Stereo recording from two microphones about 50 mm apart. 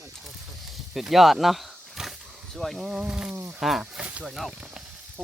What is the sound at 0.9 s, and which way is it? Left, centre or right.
Speech, centre.